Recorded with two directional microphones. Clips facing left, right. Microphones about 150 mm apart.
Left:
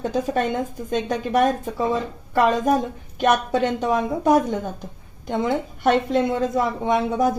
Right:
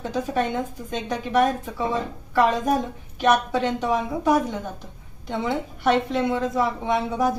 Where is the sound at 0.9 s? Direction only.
45° left (ahead or behind).